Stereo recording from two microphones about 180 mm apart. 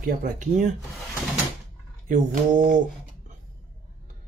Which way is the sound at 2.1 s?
45° right (ahead or behind).